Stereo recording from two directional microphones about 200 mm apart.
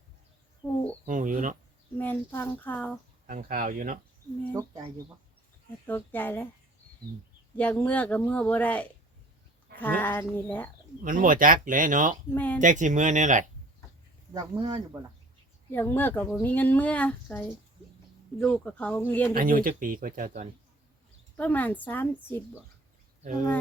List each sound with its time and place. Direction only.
0.6 s a sound: 20° left (ahead or behind)
1.0 s speech: 40° right (ahead or behind)
2.0 s speech: 10° left (ahead or behind)
3.2 s speech: 45° right (ahead or behind)
4.5 s speech: 20° right (ahead or behind)
5.8 s speech: 10° left (ahead or behind)
7.5 s speech: 5° left (ahead or behind)
11.0 s speech: 45° right (ahead or behind)
12.3 s speech: 10° left (ahead or behind)
12.5 s speech: 40° right (ahead or behind)
14.3 s speech: 20° right (ahead or behind)
15.7 s speech: 10° left (ahead or behind)
19.3 s speech: 45° right (ahead or behind)
21.3 s speech: 10° left (ahead or behind)